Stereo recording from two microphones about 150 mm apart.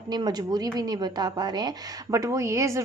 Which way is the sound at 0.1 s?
25° right (ahead or behind).